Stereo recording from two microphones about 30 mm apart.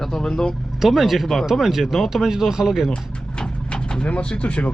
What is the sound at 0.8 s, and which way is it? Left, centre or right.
Speech, centre.